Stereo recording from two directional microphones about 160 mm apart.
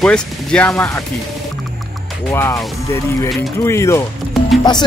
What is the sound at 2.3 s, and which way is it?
Speech, 15° left (ahead or behind).